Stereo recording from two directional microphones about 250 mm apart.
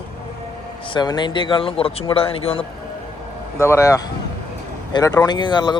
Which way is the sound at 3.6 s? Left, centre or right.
Centre.